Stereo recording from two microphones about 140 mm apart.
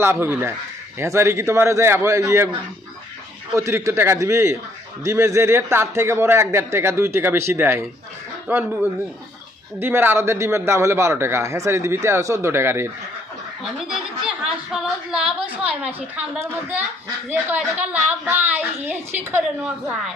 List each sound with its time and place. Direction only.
0.0 s a woman's voice: 15° right (ahead or behind)
3.5 s a man's voice: 20° right (ahead or behind)
9.8 s a man's voice: 15° right (ahead or behind)
13.8 s a woman's voice: 5° right (ahead or behind)